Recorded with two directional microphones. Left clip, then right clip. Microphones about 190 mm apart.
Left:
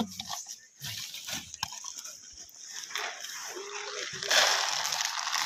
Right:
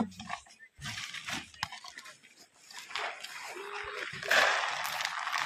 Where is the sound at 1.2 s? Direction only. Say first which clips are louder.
Left 1 dB; 35° left (ahead or behind).